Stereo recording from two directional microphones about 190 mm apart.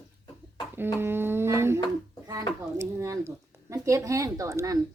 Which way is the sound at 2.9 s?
15° right (ahead or behind).